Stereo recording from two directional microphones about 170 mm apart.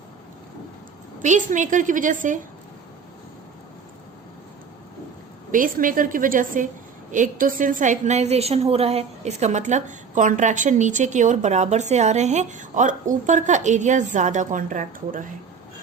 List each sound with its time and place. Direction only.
1.2 s a woman's voice: 45° right (ahead or behind)
5.5 s a woman's voice: 55° right (ahead or behind)